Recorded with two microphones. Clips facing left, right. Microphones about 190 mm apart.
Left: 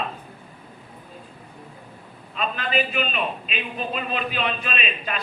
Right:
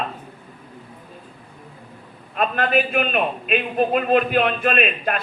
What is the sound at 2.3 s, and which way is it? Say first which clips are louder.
A man's voice: right 5 dB; 55° right (ahead or behind).